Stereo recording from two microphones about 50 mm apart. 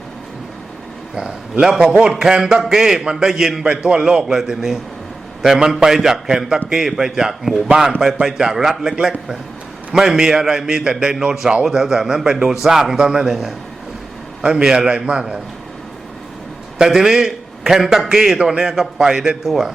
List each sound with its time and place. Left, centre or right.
1.1 s a man's voice: centre
14.4 s a man's voice: centre
16.7 s a man's voice: centre